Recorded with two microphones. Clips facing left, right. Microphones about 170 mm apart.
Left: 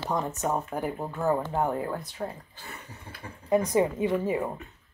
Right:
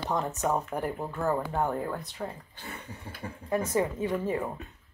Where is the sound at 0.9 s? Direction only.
15° left (ahead or behind).